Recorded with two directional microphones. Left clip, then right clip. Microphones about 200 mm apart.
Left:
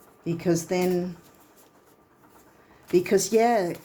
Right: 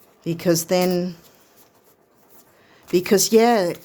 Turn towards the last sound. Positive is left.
turn(degrees=-45)  # may be behind; listen again after turning